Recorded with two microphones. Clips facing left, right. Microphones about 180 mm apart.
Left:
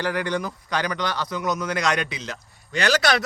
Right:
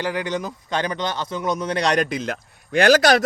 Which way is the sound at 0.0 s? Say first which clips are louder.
Even; 20° right (ahead or behind).